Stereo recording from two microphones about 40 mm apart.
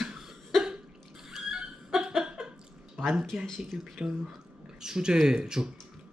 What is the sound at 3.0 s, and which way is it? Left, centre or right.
Speech, right.